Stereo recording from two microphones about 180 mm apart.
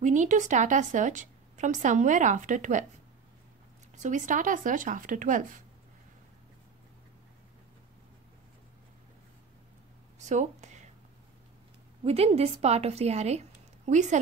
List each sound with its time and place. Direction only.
0.0 s a woman's voice: 45° right (ahead or behind)
3.9 s a woman's voice: 45° right (ahead or behind)
10.1 s a sound: 40° right (ahead or behind)
12.0 s speech: 35° right (ahead or behind)